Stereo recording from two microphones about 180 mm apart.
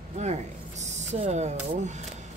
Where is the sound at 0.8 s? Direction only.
40° right (ahead or behind).